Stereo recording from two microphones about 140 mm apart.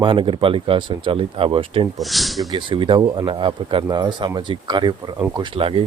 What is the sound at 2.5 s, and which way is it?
Speech, 35° right (ahead or behind).